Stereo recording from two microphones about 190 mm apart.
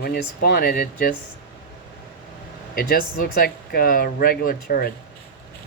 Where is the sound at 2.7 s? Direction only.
50° left (ahead or behind).